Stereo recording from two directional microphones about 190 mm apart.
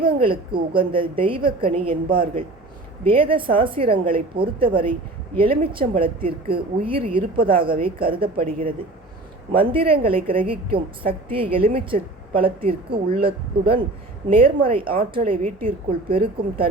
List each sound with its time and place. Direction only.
0.0 s a woman's voice: 25° right (ahead or behind)
2.0 s speech: 50° right (ahead or behind)
3.0 s a woman's voice: 30° right (ahead or behind)
7.3 s speech: 50° right (ahead or behind)
7.6 s a woman's voice: 25° right (ahead or behind)
8.4 s speech: 50° right (ahead or behind)
9.7 s a woman's voice: 30° right (ahead or behind)
14.3 s a woman's voice: 30° right (ahead or behind)